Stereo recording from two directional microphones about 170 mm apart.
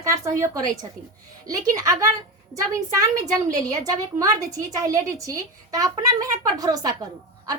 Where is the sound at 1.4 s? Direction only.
20° right (ahead or behind).